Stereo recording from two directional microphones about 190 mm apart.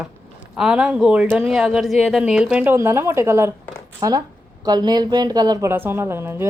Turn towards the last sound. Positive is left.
turn(degrees=-10)  # may be behind; listen again after turning